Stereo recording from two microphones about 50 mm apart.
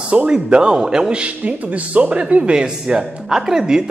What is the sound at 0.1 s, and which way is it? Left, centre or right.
Speech, right.